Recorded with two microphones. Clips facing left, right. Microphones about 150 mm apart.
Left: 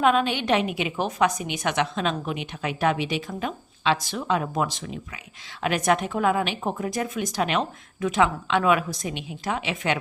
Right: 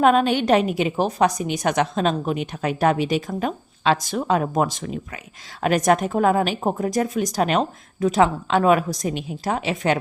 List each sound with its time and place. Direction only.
0.0 s a woman's voice: 45° right (ahead or behind)